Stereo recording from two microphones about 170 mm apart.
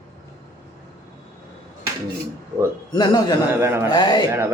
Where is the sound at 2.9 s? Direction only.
25° left (ahead or behind).